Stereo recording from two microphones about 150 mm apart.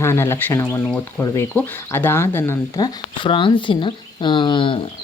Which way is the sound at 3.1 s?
35° left (ahead or behind).